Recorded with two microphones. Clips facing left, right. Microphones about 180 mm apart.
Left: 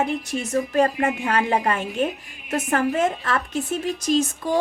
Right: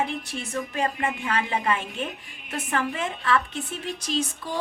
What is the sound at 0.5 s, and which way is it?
A woman's voice, 45° left (ahead or behind).